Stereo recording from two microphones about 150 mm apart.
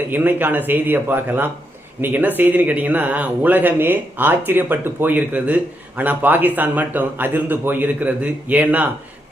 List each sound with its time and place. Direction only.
0.1 s speech: 15° right (ahead or behind)